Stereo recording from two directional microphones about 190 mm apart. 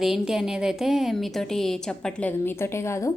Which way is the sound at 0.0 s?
Centre (ahead or behind).